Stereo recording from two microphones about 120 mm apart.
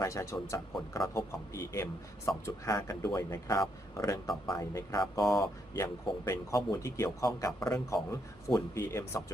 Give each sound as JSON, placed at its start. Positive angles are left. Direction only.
{"t": 0.0, "sound": "a man's voice", "side_deg": 25}
{"t": 5.2, "sound": "speech", "side_deg": 0}
{"t": 5.7, "sound": "a man's voice", "side_deg": 25}